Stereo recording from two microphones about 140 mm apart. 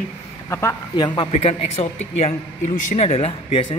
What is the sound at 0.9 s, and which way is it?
A man's voice, 30° left (ahead or behind).